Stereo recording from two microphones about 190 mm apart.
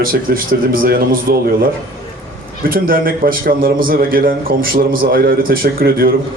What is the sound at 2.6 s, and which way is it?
A man's voice, 50° right (ahead or behind).